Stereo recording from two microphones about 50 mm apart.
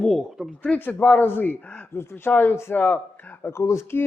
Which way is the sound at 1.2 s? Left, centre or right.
Left.